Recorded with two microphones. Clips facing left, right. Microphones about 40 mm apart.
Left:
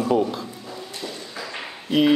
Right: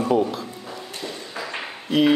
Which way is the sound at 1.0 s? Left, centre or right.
Right.